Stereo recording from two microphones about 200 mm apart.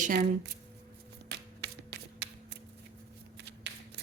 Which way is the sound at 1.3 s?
60° right (ahead or behind).